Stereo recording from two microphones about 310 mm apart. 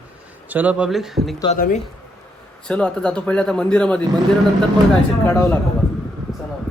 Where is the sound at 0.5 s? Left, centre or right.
Centre.